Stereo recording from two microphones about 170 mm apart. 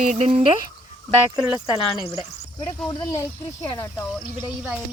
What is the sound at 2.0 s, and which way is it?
Speech, 20° right (ahead or behind).